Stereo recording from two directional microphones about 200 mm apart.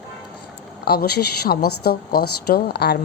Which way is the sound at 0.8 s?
50° left (ahead or behind).